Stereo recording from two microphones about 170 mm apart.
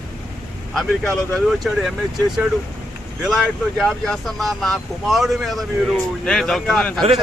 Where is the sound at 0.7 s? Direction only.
5° left (ahead or behind).